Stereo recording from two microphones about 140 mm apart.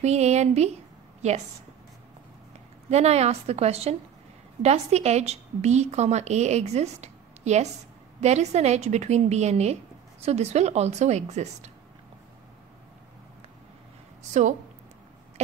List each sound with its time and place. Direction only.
0.0 s a woman's voice: 50° right (ahead or behind)
2.9 s a woman's voice: 50° right (ahead or behind)